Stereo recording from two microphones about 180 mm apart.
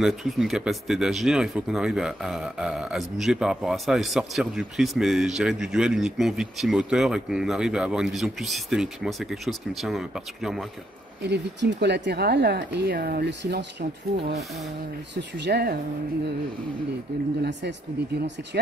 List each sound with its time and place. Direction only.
0.0 s speech: centre (ahead or behind)
11.2 s speech: 70° right (ahead or behind)
15.1 s speech: 70° right (ahead or behind)
17.4 s speech: 75° right (ahead or behind)